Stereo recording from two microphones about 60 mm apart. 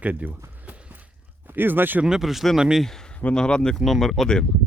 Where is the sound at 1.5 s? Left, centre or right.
Right.